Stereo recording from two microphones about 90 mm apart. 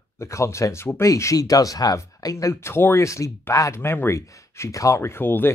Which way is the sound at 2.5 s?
25° left (ahead or behind).